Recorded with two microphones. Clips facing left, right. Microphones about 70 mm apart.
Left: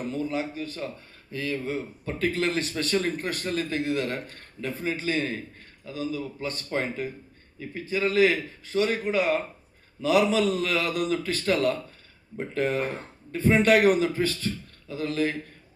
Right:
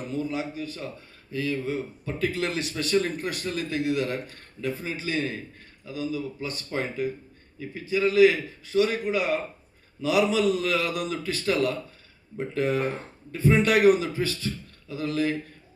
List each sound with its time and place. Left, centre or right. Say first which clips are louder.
0.0 s speech: left 1 dB; left